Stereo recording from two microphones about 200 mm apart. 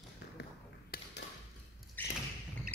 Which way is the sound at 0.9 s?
50° left (ahead or behind).